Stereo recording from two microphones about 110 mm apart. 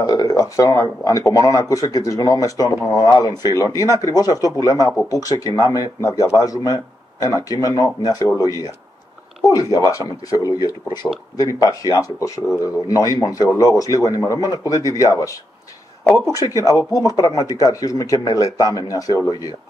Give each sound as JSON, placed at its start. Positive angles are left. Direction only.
{"t": 0.0, "sound": "speech", "side_deg": 35}
{"t": 16.3, "sound": "speech", "side_deg": 30}